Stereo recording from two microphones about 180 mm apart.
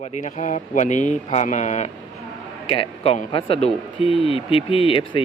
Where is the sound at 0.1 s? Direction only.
45° left (ahead or behind).